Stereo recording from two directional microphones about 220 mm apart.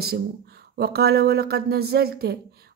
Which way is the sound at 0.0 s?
45° right (ahead or behind).